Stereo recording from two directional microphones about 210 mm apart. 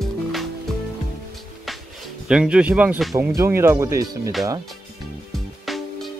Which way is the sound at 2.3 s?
5° right (ahead or behind).